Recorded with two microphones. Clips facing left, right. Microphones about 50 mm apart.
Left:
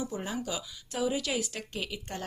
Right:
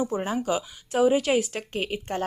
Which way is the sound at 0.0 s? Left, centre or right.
Right.